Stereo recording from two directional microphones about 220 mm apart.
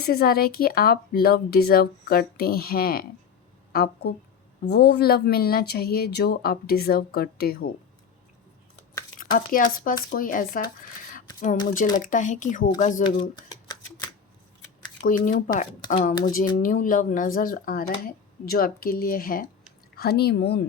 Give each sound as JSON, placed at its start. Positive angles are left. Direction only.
{"t": 0.0, "sound": "speech", "side_deg": 45}
{"t": 9.1, "sound": "speech", "side_deg": 40}
{"t": 11.7, "sound": "speech", "side_deg": 35}
{"t": 13.0, "sound": "shuffling cards", "side_deg": 20}
{"t": 15.0, "sound": "speech", "side_deg": 35}